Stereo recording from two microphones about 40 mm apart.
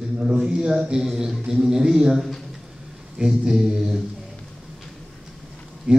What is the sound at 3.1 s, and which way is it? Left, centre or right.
Speech, centre.